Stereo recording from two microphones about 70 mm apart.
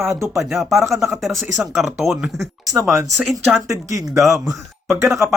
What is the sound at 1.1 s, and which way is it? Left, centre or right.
Speech, centre.